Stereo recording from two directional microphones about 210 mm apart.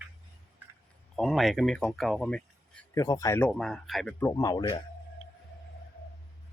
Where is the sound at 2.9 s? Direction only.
15° left (ahead or behind).